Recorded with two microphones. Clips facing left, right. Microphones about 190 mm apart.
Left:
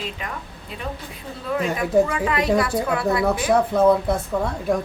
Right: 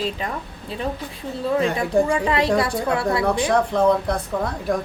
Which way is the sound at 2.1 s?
30° right (ahead or behind).